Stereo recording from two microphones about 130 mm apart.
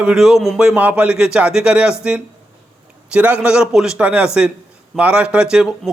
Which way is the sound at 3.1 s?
10° right (ahead or behind).